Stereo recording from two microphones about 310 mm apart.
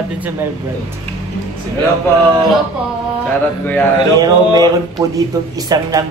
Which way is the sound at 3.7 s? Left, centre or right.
Centre.